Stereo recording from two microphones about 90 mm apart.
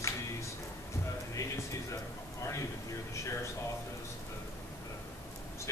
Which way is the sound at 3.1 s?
35° left (ahead or behind).